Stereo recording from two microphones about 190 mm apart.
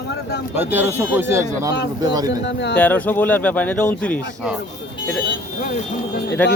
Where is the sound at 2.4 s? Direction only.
65° left (ahead or behind).